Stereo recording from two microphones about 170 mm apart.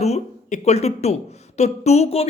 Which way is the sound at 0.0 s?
40° left (ahead or behind).